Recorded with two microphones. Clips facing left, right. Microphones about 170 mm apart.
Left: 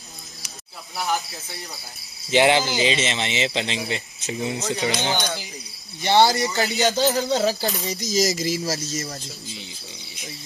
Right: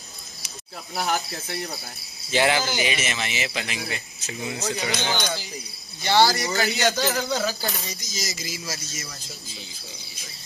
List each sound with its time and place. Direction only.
1.0 s speech: 65° right (ahead or behind)
2.3 s speech: 20° left (ahead or behind)
8.2 s speech: 40° left (ahead or behind)